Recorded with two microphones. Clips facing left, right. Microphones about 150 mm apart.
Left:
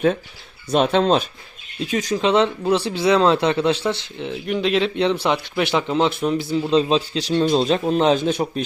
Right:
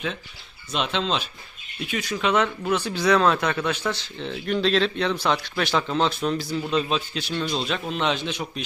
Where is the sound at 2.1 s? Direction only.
30° left (ahead or behind).